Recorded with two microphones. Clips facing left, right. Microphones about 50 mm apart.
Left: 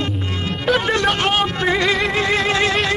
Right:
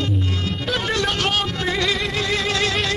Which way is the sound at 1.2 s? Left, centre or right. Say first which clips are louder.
Left 4 dB; left.